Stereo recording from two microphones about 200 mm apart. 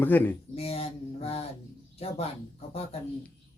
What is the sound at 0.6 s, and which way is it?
A man's voice, 30° left (ahead or behind).